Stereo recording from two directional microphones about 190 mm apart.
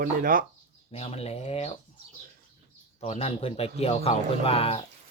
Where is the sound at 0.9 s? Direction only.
35° left (ahead or behind).